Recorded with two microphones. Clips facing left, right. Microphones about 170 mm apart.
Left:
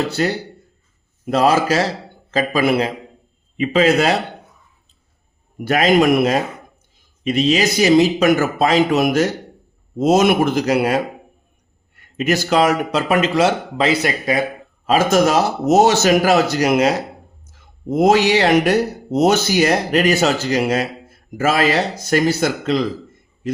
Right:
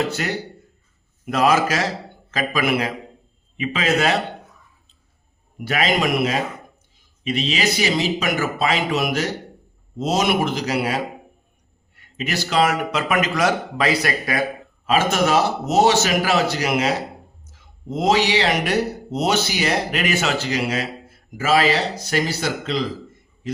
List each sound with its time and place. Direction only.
0.1 s speech: 35° left (ahead or behind)
5.6 s speech: 45° left (ahead or behind); by 14.4 s 20° left (ahead or behind)
14.8 s speech: 40° left (ahead or behind)